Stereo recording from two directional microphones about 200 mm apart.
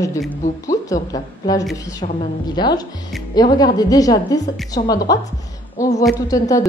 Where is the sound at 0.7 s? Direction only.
15° left (ahead or behind).